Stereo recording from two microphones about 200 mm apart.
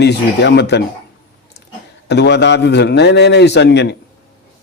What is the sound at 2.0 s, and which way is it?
Speech, 60° left (ahead or behind).